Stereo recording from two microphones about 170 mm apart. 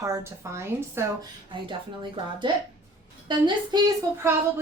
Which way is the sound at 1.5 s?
30° right (ahead or behind).